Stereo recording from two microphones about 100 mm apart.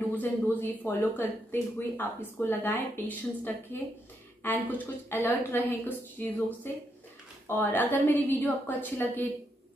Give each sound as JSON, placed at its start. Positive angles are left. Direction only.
{"t": 0.1, "sound": "speech", "side_deg": 20}
{"t": 7.4, "sound": "speech", "side_deg": 20}